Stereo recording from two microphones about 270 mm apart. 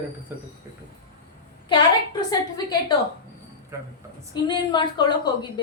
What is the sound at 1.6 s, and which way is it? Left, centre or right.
A woman's voice, centre.